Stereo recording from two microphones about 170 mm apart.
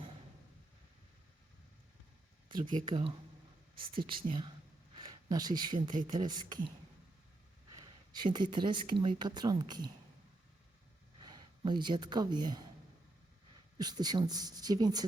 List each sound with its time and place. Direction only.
2.5 s speech: 30° right (ahead or behind)
4.9 s a sound: 25° right (ahead or behind)
6.1 s speech: 25° right (ahead or behind)
7.7 s speech: 25° right (ahead or behind)
11.2 s speech: 25° right (ahead or behind)
13.7 s speech: 25° right (ahead or behind)